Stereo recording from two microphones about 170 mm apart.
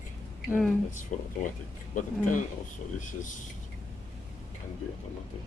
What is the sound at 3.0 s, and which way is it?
Speech, 50° left (ahead or behind).